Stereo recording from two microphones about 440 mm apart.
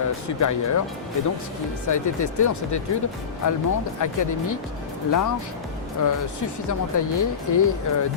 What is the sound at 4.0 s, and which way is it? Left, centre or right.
Speech, left.